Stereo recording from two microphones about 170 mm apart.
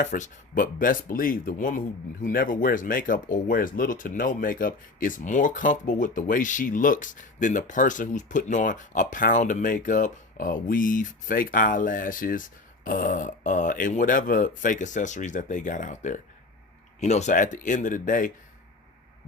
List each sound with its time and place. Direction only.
0.0 s speech: 50° left (ahead or behind)